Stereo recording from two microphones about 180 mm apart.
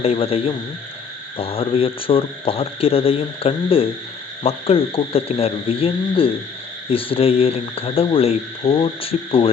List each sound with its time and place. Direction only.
0.0 s speech: 30° left (ahead or behind)